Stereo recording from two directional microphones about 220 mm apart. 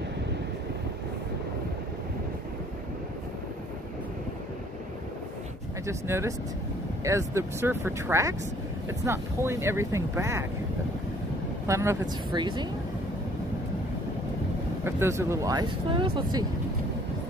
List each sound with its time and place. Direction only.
5.9 s speech: 10° right (ahead or behind)
11.6 s speech: 15° right (ahead or behind)
14.9 s speech: 10° right (ahead or behind)